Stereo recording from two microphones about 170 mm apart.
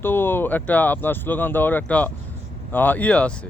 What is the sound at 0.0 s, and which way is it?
Speech, 10° left (ahead or behind).